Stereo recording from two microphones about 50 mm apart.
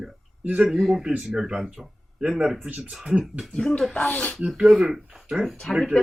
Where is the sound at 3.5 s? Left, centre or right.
Centre; by 4.3 s left.